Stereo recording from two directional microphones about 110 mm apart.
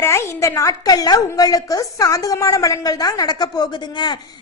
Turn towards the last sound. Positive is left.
turn(degrees=45)  # may be behind; listen again after turning